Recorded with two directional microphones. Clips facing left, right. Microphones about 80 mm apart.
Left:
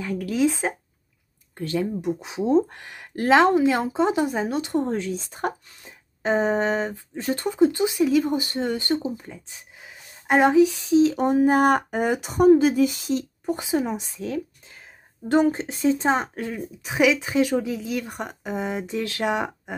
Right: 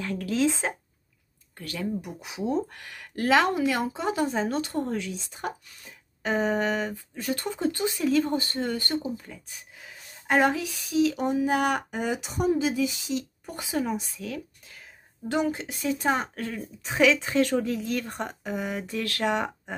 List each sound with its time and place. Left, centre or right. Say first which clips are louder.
0.2 s speech: left 3 dB; centre
1.6 s speech: left 6 dB; left
5.8 s speech: left 3 dB; left
7.4 s speech: left 10 dB; centre
11.2 s speech: left 6 dB; left
13.5 s a woman's voice: left 5 dB; left
18.4 s speech: left 6 dB; left